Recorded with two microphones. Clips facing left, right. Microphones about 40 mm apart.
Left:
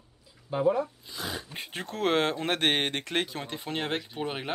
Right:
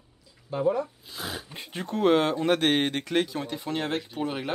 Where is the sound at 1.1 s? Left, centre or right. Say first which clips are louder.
Even; centre.